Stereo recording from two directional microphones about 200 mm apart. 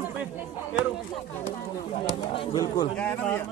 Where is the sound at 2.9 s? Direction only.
5° left (ahead or behind).